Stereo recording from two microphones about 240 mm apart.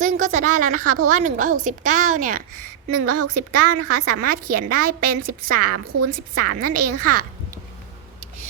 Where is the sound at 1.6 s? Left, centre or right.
Right.